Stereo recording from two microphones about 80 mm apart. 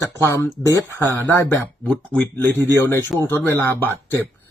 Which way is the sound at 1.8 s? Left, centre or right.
Centre.